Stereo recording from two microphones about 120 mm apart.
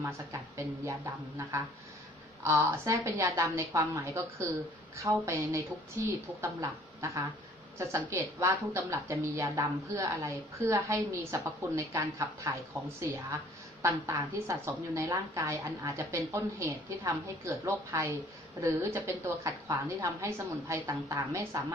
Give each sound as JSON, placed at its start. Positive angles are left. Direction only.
{"t": 0.0, "sound": "a woman's voice", "side_deg": -25}
{"t": 13.8, "sound": "a woman's voice", "side_deg": -25}